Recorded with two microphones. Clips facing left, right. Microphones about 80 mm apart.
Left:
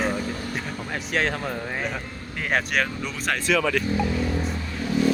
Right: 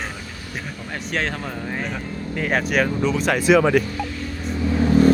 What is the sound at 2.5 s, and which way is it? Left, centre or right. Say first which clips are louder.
Speech: right 3 dB; centre.